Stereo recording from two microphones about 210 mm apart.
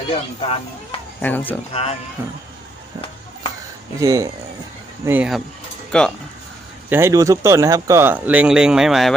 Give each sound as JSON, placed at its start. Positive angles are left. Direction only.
{"t": 0.1, "sound": "speech", "side_deg": 25}
{"t": 1.2, "sound": "speech", "side_deg": 10}
{"t": 1.7, "sound": "speech", "side_deg": 30}
{"t": 2.2, "sound": "speech", "side_deg": -10}
{"t": 4.0, "sound": "speech", "side_deg": -15}
{"t": 5.9, "sound": "speech", "side_deg": 5}
{"t": 6.9, "sound": "speech", "side_deg": -15}